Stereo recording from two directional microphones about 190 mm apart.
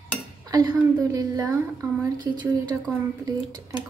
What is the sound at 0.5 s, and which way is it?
A woman's voice, 20° right (ahead or behind).